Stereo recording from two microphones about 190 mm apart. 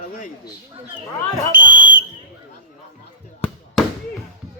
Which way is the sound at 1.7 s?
75° left (ahead or behind).